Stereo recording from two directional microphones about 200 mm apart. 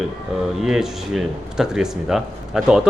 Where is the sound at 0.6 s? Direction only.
Centre (ahead or behind).